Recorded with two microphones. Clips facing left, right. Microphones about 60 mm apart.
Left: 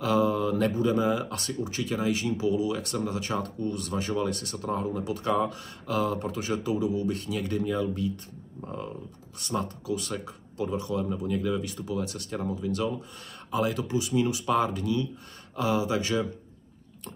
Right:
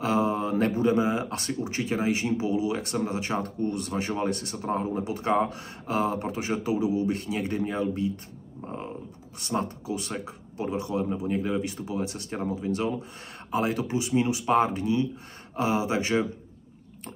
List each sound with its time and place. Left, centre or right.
0.0 s mantra: right
0.9 s speech: right